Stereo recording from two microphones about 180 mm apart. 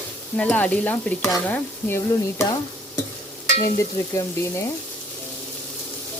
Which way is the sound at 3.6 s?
15° left (ahead or behind).